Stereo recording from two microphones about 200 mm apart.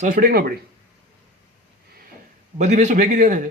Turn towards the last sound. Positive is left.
turn(degrees=-40)  # may be behind; listen again after turning